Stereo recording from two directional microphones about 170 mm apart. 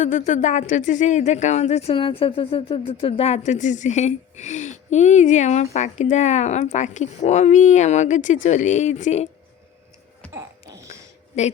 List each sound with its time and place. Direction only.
0.0 s speech: 45° left (ahead or behind)
11.3 s speech: 40° left (ahead or behind)